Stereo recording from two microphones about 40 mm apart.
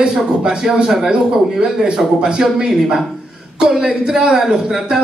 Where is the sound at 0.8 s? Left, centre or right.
Centre.